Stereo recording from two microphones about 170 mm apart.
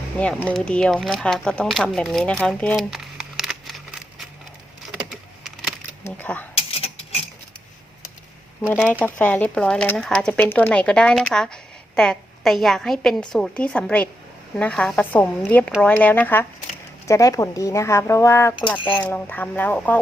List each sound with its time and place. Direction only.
0.2 s speech: 10° left (ahead or behind)
5.1 s computer keyboard: centre (ahead or behind)
6.1 s speech: 10° left (ahead or behind)
6.6 s a sound: 35° left (ahead or behind)
8.9 s a woman's voice: 10° left (ahead or behind)